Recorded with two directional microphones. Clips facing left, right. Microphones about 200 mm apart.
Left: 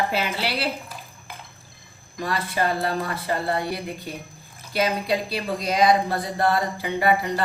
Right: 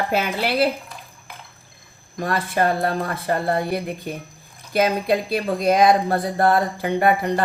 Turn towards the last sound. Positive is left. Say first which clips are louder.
# right 3 dB
turn(degrees=-50)  # may be behind; listen again after turning